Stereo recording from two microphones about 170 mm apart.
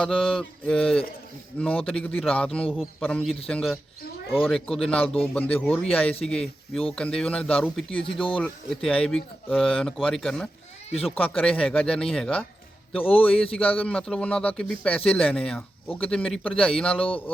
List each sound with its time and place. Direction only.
0.0 s speech: 5° left (ahead or behind)
13.0 s a man's voice: 35° left (ahead or behind)
13.2 s speech: 5° left (ahead or behind)